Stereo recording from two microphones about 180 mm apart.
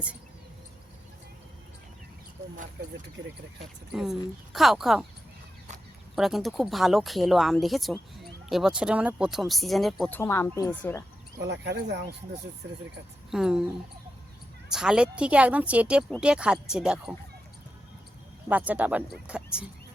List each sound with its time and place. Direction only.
3.6 s speech: centre (ahead or behind)
6.1 s speech: centre (ahead or behind)
10.2 s speech: 15° left (ahead or behind)
11.4 s speech: 70° right (ahead or behind)
13.3 s speech: 5° right (ahead or behind)
14.7 s speech: 5° right (ahead or behind)
18.4 s speech: 10° right (ahead or behind)